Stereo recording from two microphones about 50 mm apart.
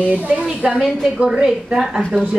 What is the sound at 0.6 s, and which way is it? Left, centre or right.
A woman's voice, centre.